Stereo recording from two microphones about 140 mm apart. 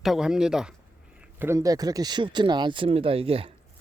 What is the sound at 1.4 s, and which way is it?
Speech, 20° right (ahead or behind).